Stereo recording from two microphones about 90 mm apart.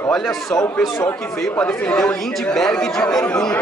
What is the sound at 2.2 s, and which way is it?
A man's voice, 5° left (ahead or behind).